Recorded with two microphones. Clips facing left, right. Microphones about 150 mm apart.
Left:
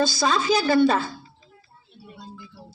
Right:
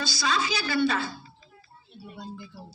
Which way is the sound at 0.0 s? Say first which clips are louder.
Left 6 dB; 50° left (ahead or behind).